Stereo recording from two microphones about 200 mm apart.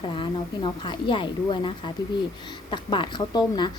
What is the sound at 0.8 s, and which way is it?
A woman's voice, 25° left (ahead or behind).